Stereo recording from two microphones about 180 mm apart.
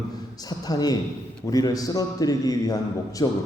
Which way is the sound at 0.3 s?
20° left (ahead or behind).